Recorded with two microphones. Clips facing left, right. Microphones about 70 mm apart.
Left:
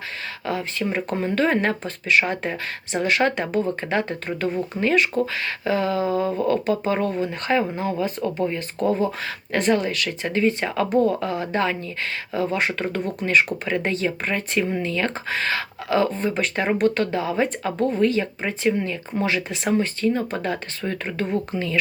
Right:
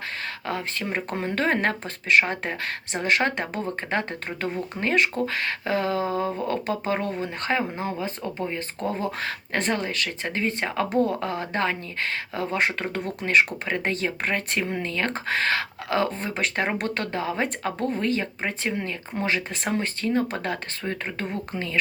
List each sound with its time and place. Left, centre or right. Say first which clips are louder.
0.4 s speech: left 5 dB; right
8.8 s speech: left 8 dB; left
9.2 s speech: left 4 dB; right
12.3 s speech: left 3 dB; right
20.8 s speech: left 4 dB; right